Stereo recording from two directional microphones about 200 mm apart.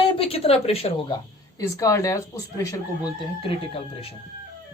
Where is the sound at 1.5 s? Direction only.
15° left (ahead or behind).